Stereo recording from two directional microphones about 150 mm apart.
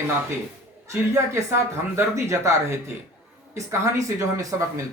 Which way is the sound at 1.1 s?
20° right (ahead or behind).